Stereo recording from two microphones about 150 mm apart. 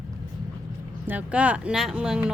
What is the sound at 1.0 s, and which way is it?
Speech, 10° right (ahead or behind).